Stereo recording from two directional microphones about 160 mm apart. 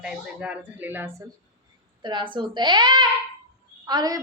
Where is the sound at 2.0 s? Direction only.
30° right (ahead or behind).